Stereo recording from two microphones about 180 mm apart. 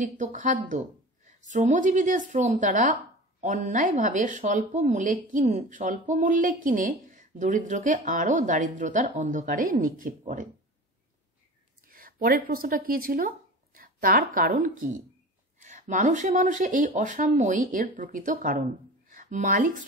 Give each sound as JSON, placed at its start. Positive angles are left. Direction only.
{"t": 0.0, "sound": "speech", "side_deg": -45}
{"t": 11.9, "sound": "speech", "side_deg": -55}